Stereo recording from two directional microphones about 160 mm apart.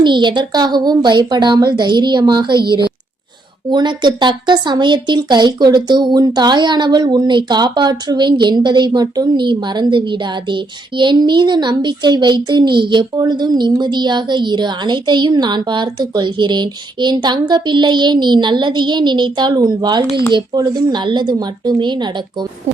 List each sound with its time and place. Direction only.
0.0 s speech: 30° right (ahead or behind)
3.7 s speech: 30° right (ahead or behind)